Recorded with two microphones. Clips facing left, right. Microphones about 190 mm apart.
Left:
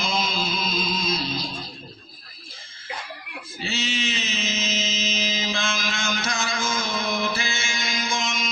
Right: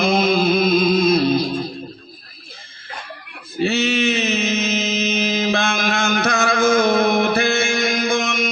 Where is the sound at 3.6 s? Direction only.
60° right (ahead or behind).